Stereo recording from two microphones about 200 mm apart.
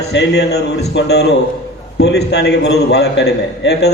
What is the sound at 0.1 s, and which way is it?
A man's voice, 60° left (ahead or behind).